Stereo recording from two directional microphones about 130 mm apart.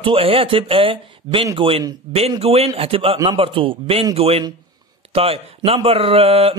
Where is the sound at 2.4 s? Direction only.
50° right (ahead or behind).